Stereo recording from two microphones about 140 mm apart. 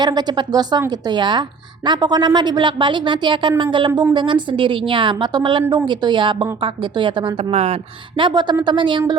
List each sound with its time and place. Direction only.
0.0 s a woman's voice: 30° right (ahead or behind)
7.5 s speech: 50° right (ahead or behind)
8.2 s a woman's voice: 30° right (ahead or behind)